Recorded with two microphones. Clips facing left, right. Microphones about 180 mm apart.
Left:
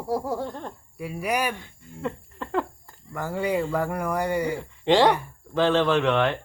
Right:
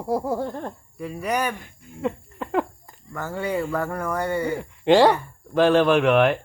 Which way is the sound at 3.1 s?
15° left (ahead or behind).